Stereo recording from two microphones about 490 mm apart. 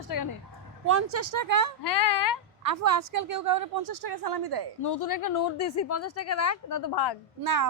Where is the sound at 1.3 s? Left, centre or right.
Right.